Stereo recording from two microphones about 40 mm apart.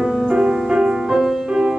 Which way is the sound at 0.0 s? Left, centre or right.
Centre.